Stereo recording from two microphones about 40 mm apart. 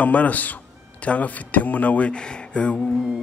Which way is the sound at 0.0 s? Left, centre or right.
Left.